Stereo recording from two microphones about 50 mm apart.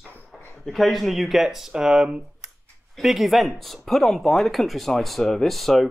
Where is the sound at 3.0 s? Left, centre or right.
Centre.